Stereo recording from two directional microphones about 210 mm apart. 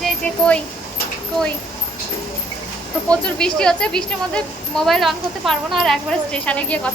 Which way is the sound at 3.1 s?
5° left (ahead or behind).